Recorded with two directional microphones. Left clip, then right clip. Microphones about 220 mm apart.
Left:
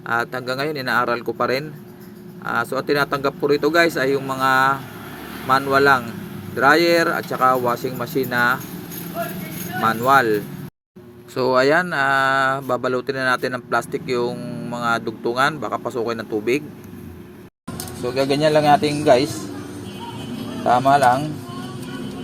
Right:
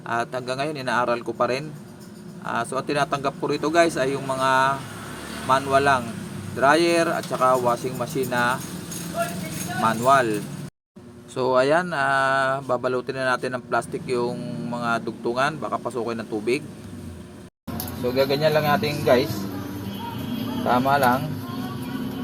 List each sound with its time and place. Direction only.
0.1 s speech: 15° left (ahead or behind)
9.8 s speech: 15° left (ahead or behind)
18.1 s speech: 50° left (ahead or behind)
20.7 s speech: 50° left (ahead or behind)